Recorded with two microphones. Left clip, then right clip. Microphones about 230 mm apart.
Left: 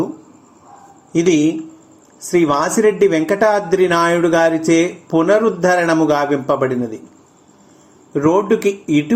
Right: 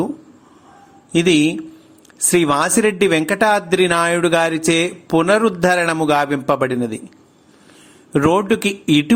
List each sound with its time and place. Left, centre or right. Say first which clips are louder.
1.1 s speech: even; right
8.1 s speech: left 1 dB; right